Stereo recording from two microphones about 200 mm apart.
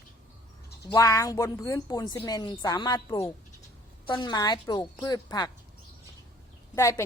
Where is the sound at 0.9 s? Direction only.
15° left (ahead or behind).